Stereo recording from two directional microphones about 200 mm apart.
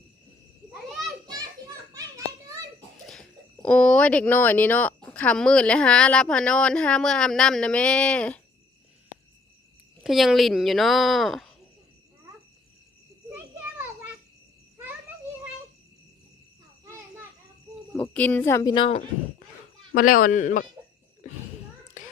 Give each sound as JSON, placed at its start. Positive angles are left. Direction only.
{"t": 0.7, "sound": "children playing", "side_deg": 0}
{"t": 1.3, "sound": "children playing", "side_deg": -20}
{"t": 3.1, "sound": "speech", "side_deg": 5}
{"t": 10.0, "sound": "speech", "side_deg": 0}
{"t": 18.0, "sound": "a woman's voice", "side_deg": 5}
{"t": 19.9, "sound": "speech", "side_deg": 45}